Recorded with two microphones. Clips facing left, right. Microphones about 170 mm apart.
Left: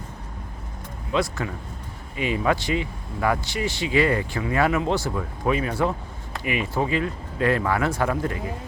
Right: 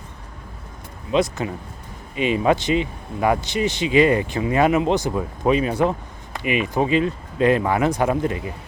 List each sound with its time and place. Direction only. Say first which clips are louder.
1.1 s speech: right 4 dB; 20° right (ahead or behind)